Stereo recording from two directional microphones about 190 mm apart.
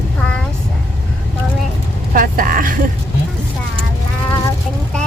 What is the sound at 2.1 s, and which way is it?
Speech, 50° right (ahead or behind).